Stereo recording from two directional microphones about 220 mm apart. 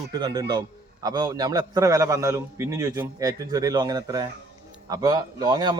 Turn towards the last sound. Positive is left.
turn(degrees=-20)  # may be behind; listen again after turning